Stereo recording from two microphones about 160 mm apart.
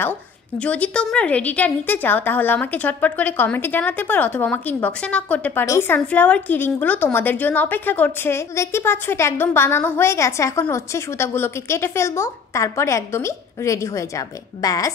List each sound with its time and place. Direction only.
0.0 s a woman's voice: 10° left (ahead or behind)